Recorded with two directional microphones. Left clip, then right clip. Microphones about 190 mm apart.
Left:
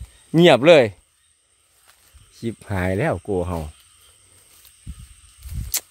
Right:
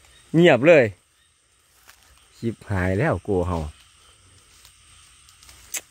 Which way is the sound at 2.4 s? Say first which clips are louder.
Left 1 dB; 10° left (ahead or behind).